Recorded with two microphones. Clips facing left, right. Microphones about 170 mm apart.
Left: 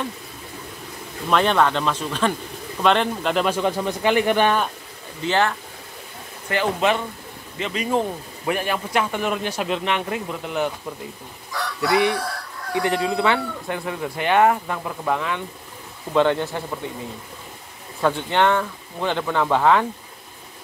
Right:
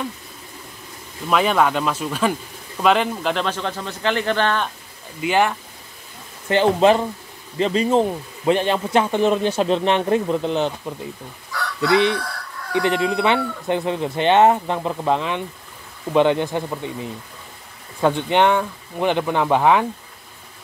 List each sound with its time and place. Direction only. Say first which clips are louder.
1.3 s speech: right 1 dB; 5° right (ahead or behind)
3.4 s speech: left 4 dB; 10° left (ahead or behind)
5.2 s speech: right 2 dB; 15° right (ahead or behind)
6.5 s speech: right 6 dB; 30° right (ahead or behind)
11.9 s speech: right 2 dB; 20° right (ahead or behind)
18.0 s speech: right 3 dB; 20° right (ahead or behind)